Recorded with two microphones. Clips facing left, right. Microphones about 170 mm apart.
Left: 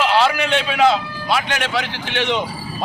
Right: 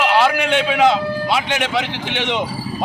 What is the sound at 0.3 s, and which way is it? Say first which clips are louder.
A man's voice: right 2 dB; 15° right (ahead or behind).